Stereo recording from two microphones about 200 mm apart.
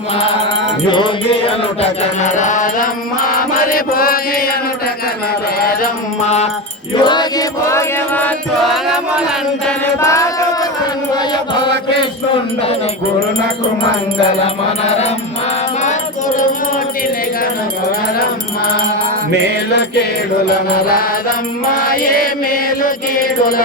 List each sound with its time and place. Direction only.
0.9 s music: 25° left (ahead or behind)
3.5 s mantra: 45° left (ahead or behind)
5.5 s mantra: 50° left (ahead or behind)
6.2 s music: 35° left (ahead or behind)
7.0 s music: 20° left (ahead or behind)
10.0 s music: 15° left (ahead or behind)
21.8 s mantra: 45° left (ahead or behind)